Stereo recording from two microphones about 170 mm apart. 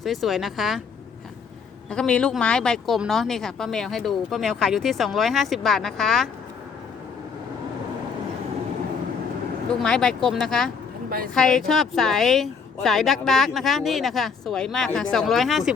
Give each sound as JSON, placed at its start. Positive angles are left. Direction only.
{"t": 0.0, "sound": "a woman's voice", "side_deg": 0}
{"t": 1.9, "sound": "a woman's voice", "side_deg": 5}
{"t": 9.8, "sound": "a woman's voice", "side_deg": 5}